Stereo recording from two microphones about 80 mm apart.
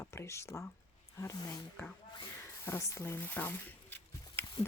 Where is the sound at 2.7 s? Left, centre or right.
Left.